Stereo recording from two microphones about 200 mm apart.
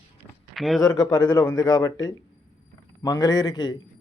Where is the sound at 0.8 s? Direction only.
20° left (ahead or behind).